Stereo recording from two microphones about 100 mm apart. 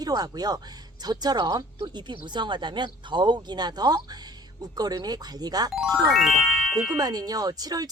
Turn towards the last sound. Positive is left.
turn(degrees=-40)  # may be behind; listen again after turning